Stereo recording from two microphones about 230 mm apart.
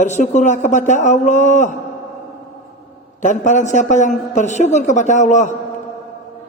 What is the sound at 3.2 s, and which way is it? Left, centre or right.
A woman's voice, left.